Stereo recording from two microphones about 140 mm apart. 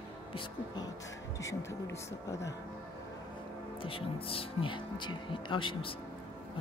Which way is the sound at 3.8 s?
40° left (ahead or behind).